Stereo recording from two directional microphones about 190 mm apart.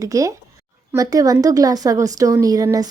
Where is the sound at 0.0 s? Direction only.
15° right (ahead or behind).